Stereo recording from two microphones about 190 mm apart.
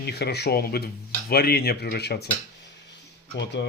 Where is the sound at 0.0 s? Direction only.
60° left (ahead or behind).